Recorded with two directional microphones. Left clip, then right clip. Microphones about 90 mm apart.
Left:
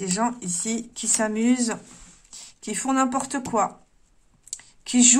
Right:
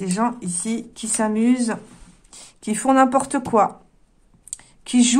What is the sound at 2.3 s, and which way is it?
A woman's voice, 40° right (ahead or behind).